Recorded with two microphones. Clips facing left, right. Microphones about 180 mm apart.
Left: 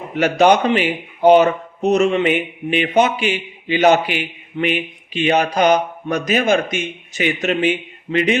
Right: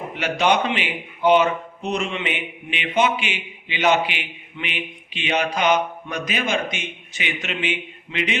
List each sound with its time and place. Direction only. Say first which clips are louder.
0.2 s speech: left 7 dB; 45° left (ahead or behind)